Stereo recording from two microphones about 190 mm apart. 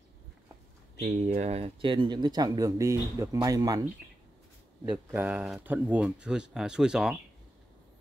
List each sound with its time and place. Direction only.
1.0 s speech: 35° right (ahead or behind); by 3.8 s 20° right (ahead or behind)
4.9 s speech: 10° right (ahead or behind)